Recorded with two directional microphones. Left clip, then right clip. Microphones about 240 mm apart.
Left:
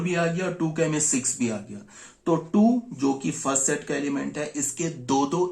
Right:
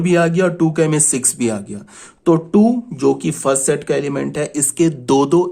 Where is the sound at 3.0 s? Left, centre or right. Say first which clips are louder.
Right 12 dB; right.